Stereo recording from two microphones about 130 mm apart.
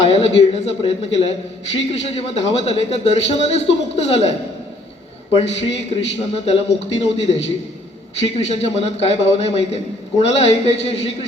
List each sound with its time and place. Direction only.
0.0 s a man's voice: 55° left (ahead or behind)